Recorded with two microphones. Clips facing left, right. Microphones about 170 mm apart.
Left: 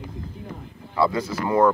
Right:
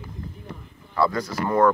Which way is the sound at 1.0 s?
10° left (ahead or behind).